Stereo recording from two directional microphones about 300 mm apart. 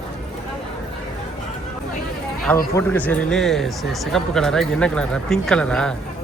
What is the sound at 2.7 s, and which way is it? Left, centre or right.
Speech, centre.